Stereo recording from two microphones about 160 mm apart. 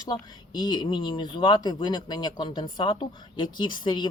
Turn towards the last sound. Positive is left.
turn(degrees=30)  # may be behind; listen again after turning